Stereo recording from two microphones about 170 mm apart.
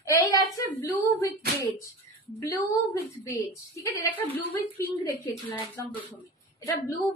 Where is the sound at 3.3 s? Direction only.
20° left (ahead or behind).